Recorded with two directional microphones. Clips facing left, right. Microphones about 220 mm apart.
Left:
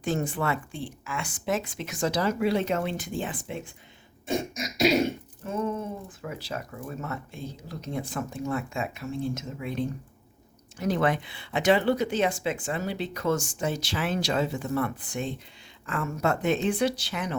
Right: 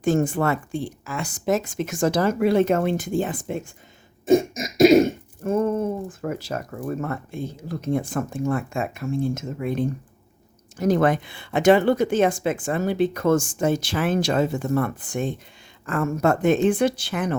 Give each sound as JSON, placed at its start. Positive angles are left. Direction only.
{"t": 0.0, "sound": "throat clearing", "side_deg": -50}